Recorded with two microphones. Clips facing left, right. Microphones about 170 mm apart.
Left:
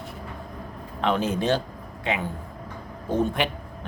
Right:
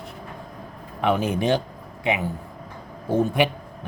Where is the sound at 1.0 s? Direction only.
10° right (ahead or behind).